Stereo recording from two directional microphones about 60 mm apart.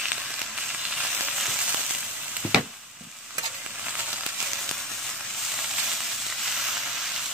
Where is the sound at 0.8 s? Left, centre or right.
Centre.